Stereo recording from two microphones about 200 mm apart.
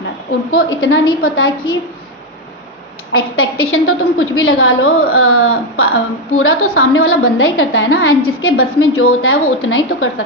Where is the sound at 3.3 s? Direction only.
90° left.